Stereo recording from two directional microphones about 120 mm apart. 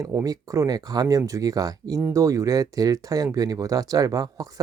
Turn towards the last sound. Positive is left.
turn(degrees=-30)  # may be behind; listen again after turning